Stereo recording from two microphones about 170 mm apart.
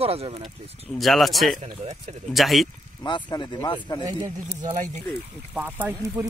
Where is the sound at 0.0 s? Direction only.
35° right (ahead or behind).